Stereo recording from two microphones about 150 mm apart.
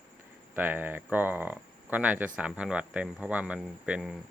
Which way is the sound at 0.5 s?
10° right (ahead or behind).